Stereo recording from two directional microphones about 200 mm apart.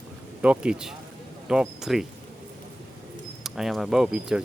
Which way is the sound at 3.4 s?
Centre (ahead or behind).